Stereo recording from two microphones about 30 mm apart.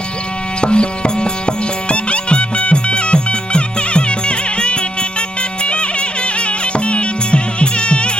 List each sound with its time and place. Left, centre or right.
0.6 s music: left